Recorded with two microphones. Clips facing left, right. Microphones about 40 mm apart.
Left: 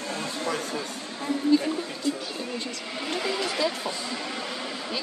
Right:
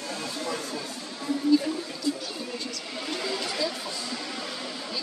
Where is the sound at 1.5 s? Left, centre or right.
Left.